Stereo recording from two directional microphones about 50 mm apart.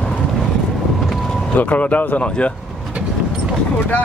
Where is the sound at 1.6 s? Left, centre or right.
Left.